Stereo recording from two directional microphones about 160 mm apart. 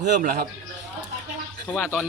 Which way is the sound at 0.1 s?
65° right (ahead or behind).